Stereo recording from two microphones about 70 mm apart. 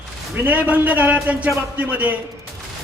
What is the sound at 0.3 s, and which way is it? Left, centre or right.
Music, right.